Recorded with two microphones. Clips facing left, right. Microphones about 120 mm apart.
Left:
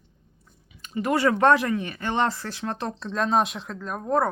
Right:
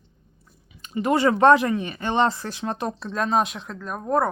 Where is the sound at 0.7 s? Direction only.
25° right (ahead or behind).